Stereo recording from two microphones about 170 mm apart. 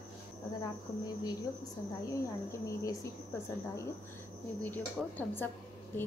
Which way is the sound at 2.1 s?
20° left (ahead or behind).